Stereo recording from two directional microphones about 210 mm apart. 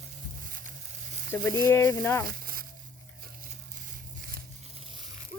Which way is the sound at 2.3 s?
45° right (ahead or behind).